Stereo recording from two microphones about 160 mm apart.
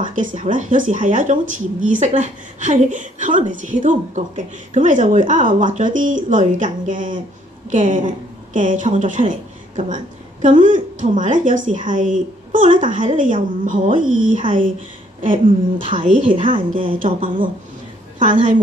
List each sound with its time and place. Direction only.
0.0 s speech: 55° right (ahead or behind)